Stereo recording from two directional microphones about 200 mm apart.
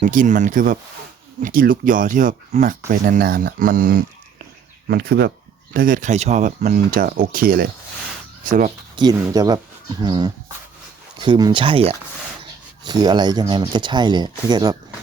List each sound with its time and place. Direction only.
0.0 s speech: 40° right (ahead or behind)
3.2 s speech: 50° right (ahead or behind)
9.0 s speech: 20° right (ahead or behind)